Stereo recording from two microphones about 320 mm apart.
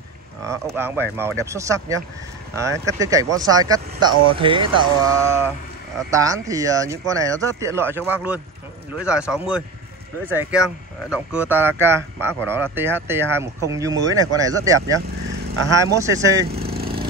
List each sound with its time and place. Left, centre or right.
0.4 s a man's voice: centre
15.6 s speech: centre
15.9 s speech: centre
16.4 s vehicle: right